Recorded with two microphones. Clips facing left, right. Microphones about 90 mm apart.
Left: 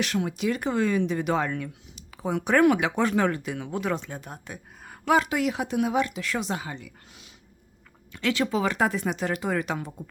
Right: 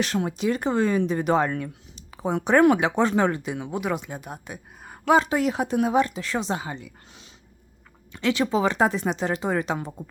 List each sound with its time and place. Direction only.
0.0 s speech: 35° right (ahead or behind)
8.1 s speech: 20° right (ahead or behind)